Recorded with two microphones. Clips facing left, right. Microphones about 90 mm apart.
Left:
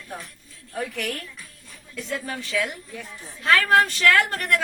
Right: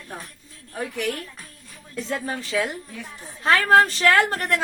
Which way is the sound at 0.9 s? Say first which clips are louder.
Right 3 dB; 20° right (ahead or behind).